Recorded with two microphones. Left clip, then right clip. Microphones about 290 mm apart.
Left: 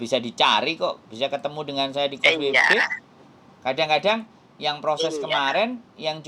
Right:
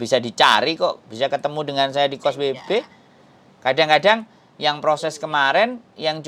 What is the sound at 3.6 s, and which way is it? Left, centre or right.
Speech, right.